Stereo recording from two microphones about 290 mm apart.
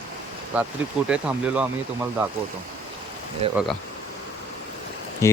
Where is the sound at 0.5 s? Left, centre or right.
Centre.